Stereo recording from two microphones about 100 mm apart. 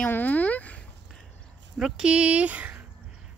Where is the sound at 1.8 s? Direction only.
5° right (ahead or behind).